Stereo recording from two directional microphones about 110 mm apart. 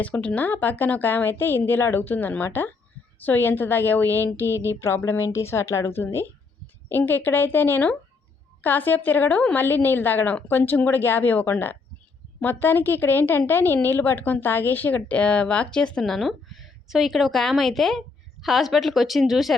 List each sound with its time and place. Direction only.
0.0 s a woman's voice: 15° left (ahead or behind)